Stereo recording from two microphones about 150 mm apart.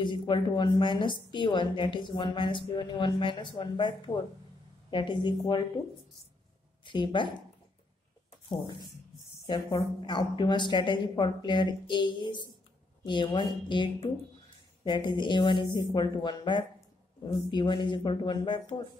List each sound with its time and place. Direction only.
0.0 s a woman's voice: 30° left (ahead or behind)
6.8 s speech: 30° left (ahead or behind)
8.5 s a woman's voice: 30° left (ahead or behind)